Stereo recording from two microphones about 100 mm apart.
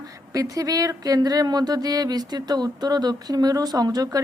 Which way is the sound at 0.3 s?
35° right (ahead or behind).